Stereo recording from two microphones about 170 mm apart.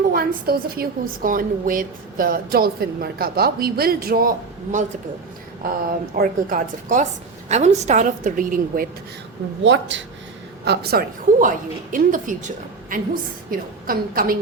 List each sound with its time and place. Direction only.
0.1 s a woman's voice: 60° right (ahead or behind)
9.6 s speech: 90° right
10.7 s a woman's voice: 55° right (ahead or behind)